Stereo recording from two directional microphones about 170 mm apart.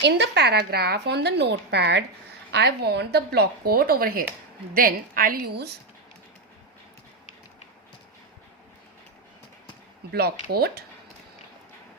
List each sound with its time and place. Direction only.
0.0 s a woman's voice: 85° right; by 5.7 s 65° right (ahead or behind)
10.1 s a woman's voice: 65° right (ahead or behind)